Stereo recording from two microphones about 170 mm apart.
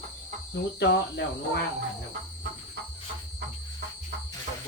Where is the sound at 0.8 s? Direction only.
90° left.